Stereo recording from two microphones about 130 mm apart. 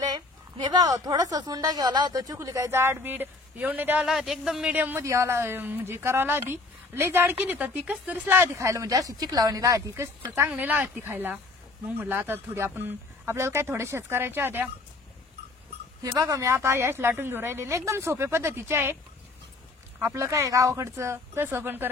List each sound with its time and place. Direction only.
0.7 s speech: 30° right (ahead or behind)
4.0 s speech: centre (ahead or behind)
16.0 s speech: 25° right (ahead or behind)
20.0 s speech: 20° right (ahead or behind)